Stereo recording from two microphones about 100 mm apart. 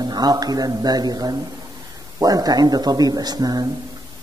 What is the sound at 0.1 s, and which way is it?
Speech, 45° right (ahead or behind).